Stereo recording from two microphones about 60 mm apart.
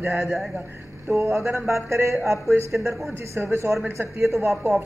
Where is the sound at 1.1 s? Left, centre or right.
Right.